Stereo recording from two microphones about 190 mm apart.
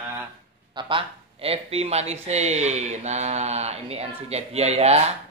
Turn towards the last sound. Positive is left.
turn(degrees=-35)  # may be behind; listen again after turning